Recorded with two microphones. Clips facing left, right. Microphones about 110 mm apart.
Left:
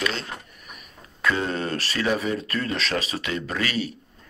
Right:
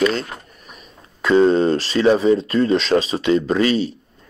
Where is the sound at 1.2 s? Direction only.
25° right (ahead or behind).